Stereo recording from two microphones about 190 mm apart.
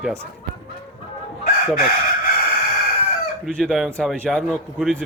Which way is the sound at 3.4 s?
Centre (ahead or behind).